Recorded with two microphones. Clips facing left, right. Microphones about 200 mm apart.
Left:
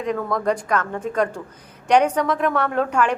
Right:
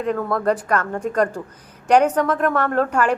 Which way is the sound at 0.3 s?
5° right (ahead or behind).